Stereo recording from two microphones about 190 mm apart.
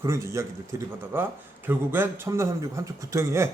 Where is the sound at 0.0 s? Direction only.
15° right (ahead or behind).